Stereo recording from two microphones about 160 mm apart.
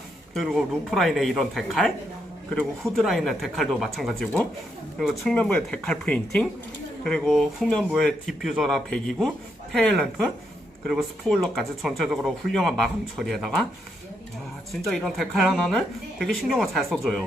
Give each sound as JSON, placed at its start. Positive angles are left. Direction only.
{"t": 0.3, "sound": "speech", "side_deg": 0}
{"t": 14.8, "sound": "speech", "side_deg": 0}